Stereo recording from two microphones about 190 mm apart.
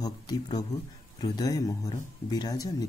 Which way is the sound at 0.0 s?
20° left (ahead or behind).